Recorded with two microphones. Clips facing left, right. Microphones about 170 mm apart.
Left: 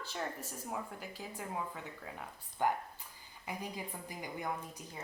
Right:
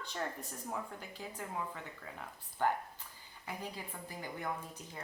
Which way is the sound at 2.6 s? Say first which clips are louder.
Even; 15° left (ahead or behind).